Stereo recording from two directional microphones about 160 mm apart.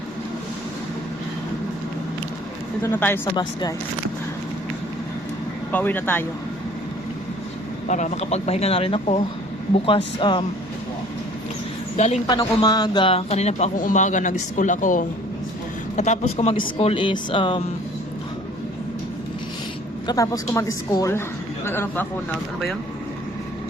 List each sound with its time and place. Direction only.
2.8 s a man's voice: 10° left (ahead or behind)
3.3 s a woman's voice: 25° left (ahead or behind)
5.7 s a man's voice: 10° left (ahead or behind)
7.9 s speech: 50° left (ahead or behind); by 10.4 s 30° left (ahead or behind)
11.9 s a man's voice: 45° left (ahead or behind)
12.3 s a man's voice: 25° left (ahead or behind)
20.1 s a woman's voice: 20° left (ahead or behind)